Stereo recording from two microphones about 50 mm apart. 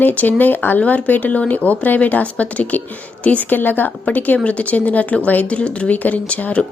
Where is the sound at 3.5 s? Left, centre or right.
Left.